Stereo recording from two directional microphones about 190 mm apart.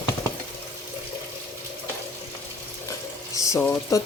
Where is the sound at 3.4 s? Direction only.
15° left (ahead or behind).